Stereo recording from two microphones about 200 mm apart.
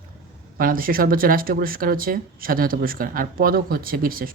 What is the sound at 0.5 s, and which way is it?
Speech, 45° right (ahead or behind).